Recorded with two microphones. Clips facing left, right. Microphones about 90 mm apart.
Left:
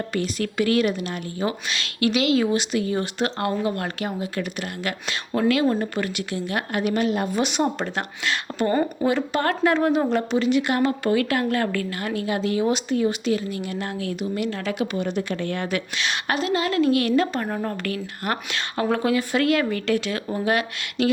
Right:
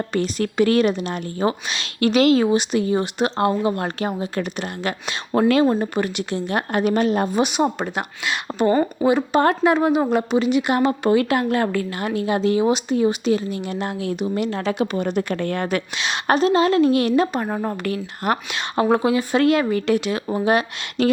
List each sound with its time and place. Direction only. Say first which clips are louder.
0.1 s a woman's voice: right 3 dB; 30° right (ahead or behind)
2.0 s a woman's voice: right 5 dB; 40° right (ahead or behind)
2.5 s a woman's voice: right 4 dB; 25° right (ahead or behind)
5.8 s a woman's voice: right 3 dB; 20° right (ahead or behind)
6.3 s a woman's voice: right 5 dB; 30° right (ahead or behind)
7.3 s a woman's voice: right 3 dB; 15° right (ahead or behind); by 15.8 s 45° right (ahead or behind)
16.2 s a woman's voice: right 8 dB; 35° right (ahead or behind)
21.0 s a woman's voice: right 3 dB; 35° right (ahead or behind)